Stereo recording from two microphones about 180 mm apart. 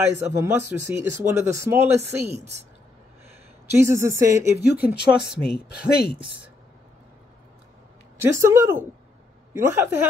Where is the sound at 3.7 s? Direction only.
15° right (ahead or behind).